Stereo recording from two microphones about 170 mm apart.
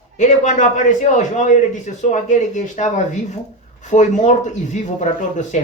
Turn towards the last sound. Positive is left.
turn(degrees=45)  # may be behind; listen again after turning